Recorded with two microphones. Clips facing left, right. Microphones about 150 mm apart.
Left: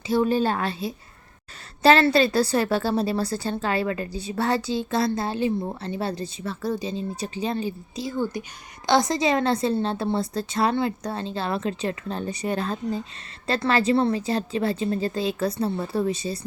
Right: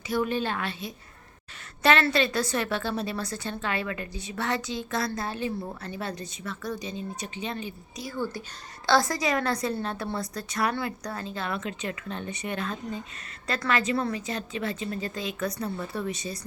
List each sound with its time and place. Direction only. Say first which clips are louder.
0.1 s a woman's voice: left 6 dB; 30° left (ahead or behind)